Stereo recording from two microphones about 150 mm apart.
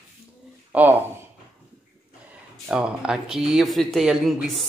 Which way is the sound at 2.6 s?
5° right (ahead or behind).